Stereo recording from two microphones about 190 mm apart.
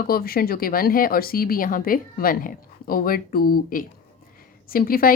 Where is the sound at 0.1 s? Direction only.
50° left (ahead or behind).